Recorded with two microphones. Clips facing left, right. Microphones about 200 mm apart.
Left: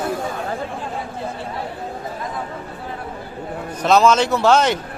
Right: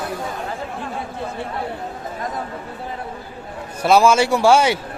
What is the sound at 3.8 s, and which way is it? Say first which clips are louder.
Speech: right 1 dB; 10° right (ahead or behind).